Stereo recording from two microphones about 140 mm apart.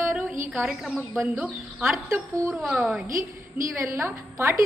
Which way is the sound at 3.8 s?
20° right (ahead or behind).